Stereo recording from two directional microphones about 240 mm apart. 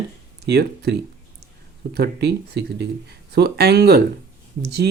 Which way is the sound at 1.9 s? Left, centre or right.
Right.